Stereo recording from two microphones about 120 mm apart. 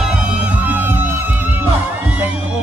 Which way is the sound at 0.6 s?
15° right (ahead or behind).